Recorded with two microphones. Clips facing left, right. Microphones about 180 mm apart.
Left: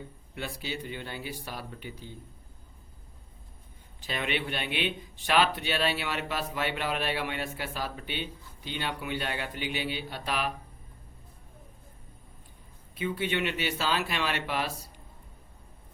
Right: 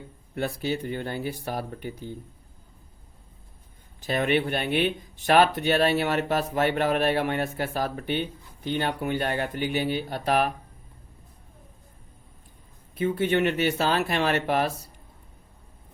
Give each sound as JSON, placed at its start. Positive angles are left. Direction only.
{"t": 0.3, "sound": "speech", "side_deg": -50}
{"t": 4.0, "sound": "speech", "side_deg": -45}
{"t": 13.0, "sound": "speech", "side_deg": -45}